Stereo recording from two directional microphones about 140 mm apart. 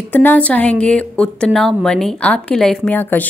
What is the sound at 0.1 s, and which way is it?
A woman's voice, 15° left (ahead or behind).